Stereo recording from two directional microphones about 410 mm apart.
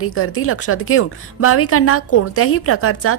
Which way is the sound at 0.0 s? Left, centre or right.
Left.